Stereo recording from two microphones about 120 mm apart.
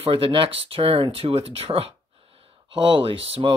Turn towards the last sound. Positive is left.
turn(degrees=-50)  # may be behind; listen again after turning